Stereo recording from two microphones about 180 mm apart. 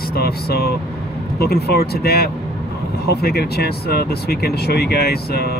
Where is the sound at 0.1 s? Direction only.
60° left (ahead or behind).